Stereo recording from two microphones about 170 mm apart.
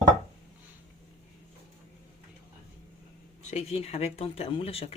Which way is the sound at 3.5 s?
40° left (ahead or behind).